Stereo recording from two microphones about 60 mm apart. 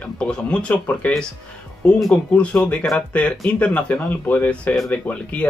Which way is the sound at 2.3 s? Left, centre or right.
Left.